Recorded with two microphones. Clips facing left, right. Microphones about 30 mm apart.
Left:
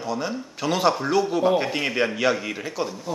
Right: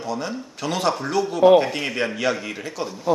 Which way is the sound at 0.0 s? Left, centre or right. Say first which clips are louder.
Even; centre.